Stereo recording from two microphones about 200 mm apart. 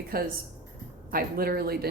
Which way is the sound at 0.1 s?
50° right (ahead or behind).